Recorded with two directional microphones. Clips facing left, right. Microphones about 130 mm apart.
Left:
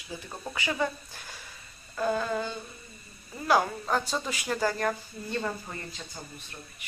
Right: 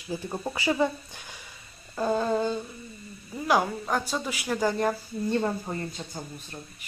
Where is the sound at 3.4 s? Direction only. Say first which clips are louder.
Right 1 dB; 10° right (ahead or behind).